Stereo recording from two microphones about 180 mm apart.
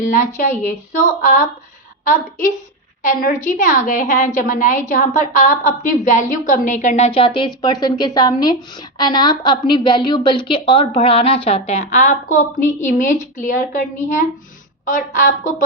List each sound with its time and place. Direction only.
0.0 s a woman's voice: 45° left (ahead or behind)
3.0 s a woman's voice: 50° left (ahead or behind)